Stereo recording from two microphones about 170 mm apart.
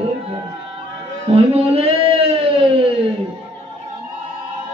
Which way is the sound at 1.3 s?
35° right (ahead or behind).